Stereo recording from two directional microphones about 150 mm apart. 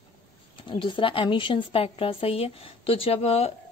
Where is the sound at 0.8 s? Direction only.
35° left (ahead or behind).